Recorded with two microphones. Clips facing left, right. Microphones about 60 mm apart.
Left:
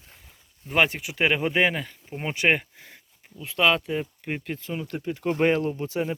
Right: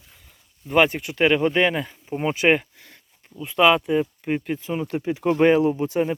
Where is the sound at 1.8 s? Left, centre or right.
Centre.